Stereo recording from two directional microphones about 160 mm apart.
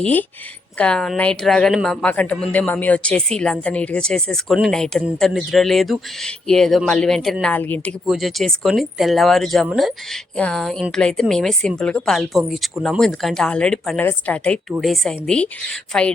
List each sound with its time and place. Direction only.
0.0 s speech: 10° left (ahead or behind)
8.0 s speech: centre (ahead or behind)